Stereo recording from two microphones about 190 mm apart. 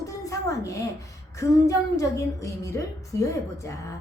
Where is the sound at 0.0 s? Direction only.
15° left (ahead or behind).